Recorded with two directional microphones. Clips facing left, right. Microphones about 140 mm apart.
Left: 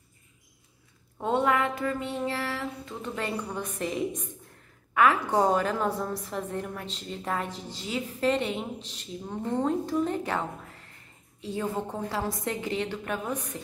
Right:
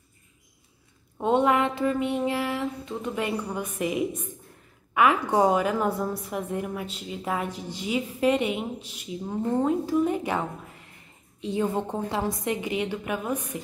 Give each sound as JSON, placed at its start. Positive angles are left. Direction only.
{"t": 1.1, "sound": "a woman's voice", "side_deg": -20}